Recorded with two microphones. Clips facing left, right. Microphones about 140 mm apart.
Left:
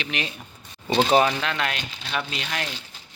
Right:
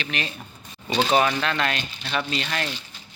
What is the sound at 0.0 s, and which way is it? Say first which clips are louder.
Speech: even; 15° left (ahead or behind).